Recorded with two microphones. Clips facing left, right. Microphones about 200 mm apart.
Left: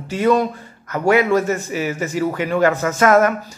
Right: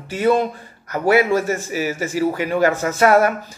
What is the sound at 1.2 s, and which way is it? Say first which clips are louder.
Speech: left 1 dB; 10° right (ahead or behind).